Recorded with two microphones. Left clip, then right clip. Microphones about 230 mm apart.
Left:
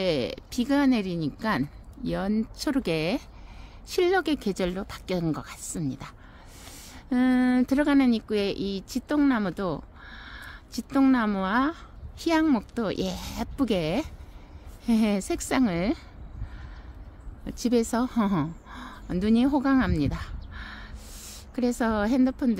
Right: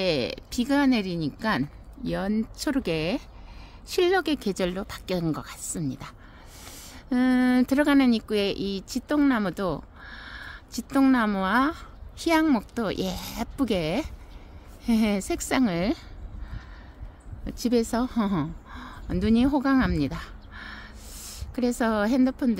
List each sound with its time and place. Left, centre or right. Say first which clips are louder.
0.0 s speech: right 1 dB; centre
17.5 s a woman's voice: even; centre